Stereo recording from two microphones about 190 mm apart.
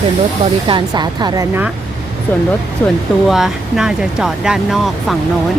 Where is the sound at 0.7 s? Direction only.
20° right (ahead or behind).